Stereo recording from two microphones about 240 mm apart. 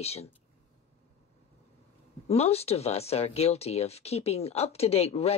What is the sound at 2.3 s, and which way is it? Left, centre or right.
Speech, left.